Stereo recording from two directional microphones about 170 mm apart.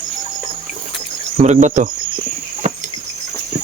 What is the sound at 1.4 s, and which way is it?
Cricket, 45° right (ahead or behind).